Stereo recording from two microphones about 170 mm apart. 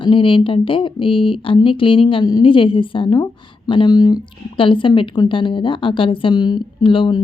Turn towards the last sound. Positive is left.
turn(degrees=30)  # may be behind; listen again after turning